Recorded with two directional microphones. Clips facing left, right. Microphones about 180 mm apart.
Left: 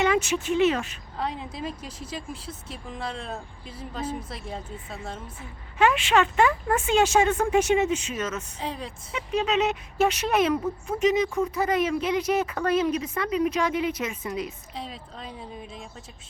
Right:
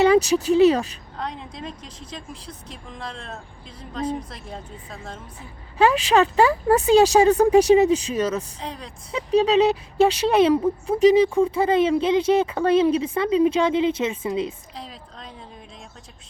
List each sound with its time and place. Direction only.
0.0 s speech: 35° right (ahead or behind)
1.1 s speech: 5° left (ahead or behind)
5.4 s speech: 35° right (ahead or behind)
8.5 s speech: centre (ahead or behind)
9.1 s speech: 35° right (ahead or behind)
14.8 s speech: 5° left (ahead or behind)